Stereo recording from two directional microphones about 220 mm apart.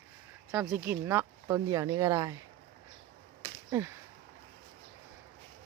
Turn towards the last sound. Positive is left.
turn(degrees=-10)  # may be behind; listen again after turning